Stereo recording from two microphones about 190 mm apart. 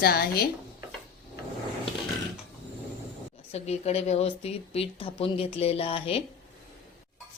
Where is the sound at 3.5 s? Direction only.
35° left (ahead or behind).